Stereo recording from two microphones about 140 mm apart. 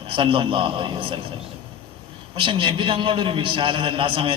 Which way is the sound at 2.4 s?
40° right (ahead or behind).